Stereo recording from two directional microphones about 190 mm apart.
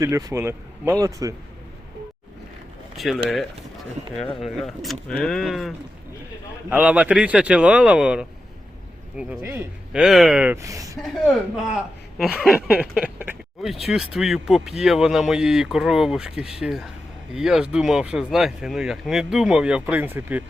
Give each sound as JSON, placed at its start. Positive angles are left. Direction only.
{"t": 0.0, "sound": "speech", "side_deg": -15}
{"t": 3.0, "sound": "speech", "side_deg": 0}
{"t": 4.4, "sound": "speech", "side_deg": 0}
{"t": 9.4, "sound": "speech", "side_deg": -10}
{"t": 11.0, "sound": "speech", "side_deg": 0}